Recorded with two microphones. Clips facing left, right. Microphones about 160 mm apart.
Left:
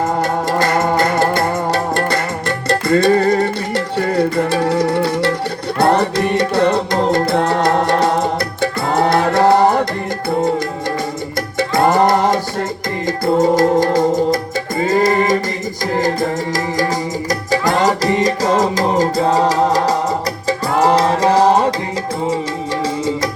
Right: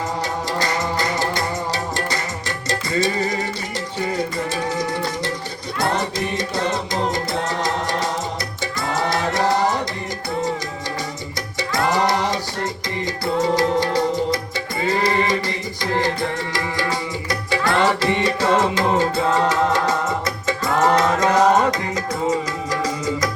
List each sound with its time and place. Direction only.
0.0 s music: 50° left (ahead or behind)
11.9 s music: 50° left (ahead or behind); by 21.8 s 30° left (ahead or behind)